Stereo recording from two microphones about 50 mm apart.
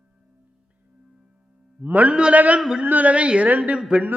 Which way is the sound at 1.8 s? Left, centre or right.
Right.